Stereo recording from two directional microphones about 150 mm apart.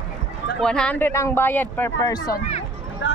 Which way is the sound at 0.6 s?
5° left (ahead or behind).